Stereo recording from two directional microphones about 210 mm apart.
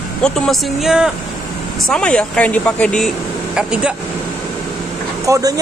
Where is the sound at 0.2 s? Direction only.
Centre (ahead or behind).